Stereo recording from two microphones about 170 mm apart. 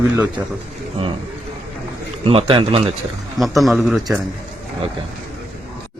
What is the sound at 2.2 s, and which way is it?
Speech, 30° right (ahead or behind).